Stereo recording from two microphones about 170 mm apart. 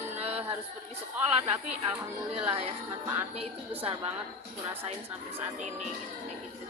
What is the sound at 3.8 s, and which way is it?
Music, 35° right (ahead or behind).